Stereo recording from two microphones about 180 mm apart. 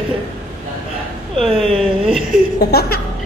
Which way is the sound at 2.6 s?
60° left (ahead or behind).